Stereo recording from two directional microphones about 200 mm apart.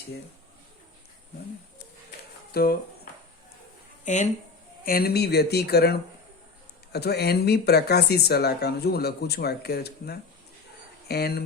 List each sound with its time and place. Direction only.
2.5 s speech: 50° left (ahead or behind)
4.0 s speech: 40° left (ahead or behind)
4.9 s speech: 50° left (ahead or behind)